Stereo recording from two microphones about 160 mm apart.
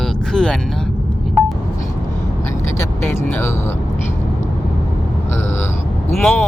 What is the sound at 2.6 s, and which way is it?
Speech, 15° left (ahead or behind).